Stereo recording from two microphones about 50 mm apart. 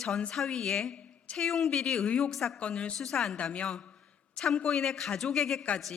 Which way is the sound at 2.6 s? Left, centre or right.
Left.